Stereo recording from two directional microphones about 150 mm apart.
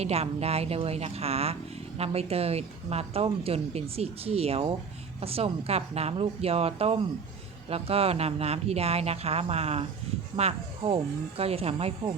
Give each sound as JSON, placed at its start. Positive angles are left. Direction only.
{"t": 0.0, "sound": "speech", "side_deg": -45}